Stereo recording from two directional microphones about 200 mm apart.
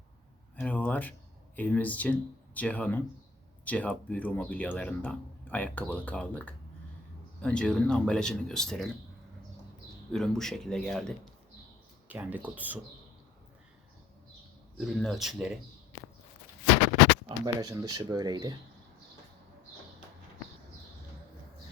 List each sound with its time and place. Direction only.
0.5 s speech: 10° left (ahead or behind)
10.1 s speech: 5° left (ahead or behind)
12.0 s speech: 10° right (ahead or behind)
14.8 s speech: centre (ahead or behind)
17.2 s speech: 20° right (ahead or behind)